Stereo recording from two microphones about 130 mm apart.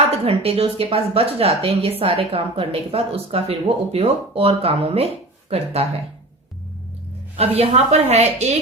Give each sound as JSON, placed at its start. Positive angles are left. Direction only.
{"t": 0.1, "sound": "a woman's voice", "side_deg": -50}
{"t": 7.3, "sound": "a woman's voice", "side_deg": -50}